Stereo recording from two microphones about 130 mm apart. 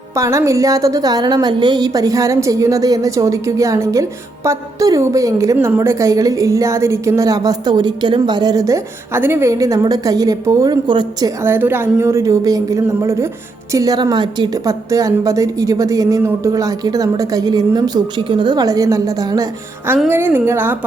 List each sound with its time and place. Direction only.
0.2 s a woman's voice: 25° right (ahead or behind)
11.4 s a woman's voice: 15° right (ahead or behind)
20.1 s a woman's voice: 15° right (ahead or behind)